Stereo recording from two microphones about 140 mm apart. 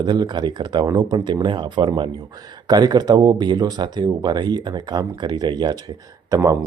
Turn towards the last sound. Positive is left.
turn(degrees=-25)  # may be behind; listen again after turning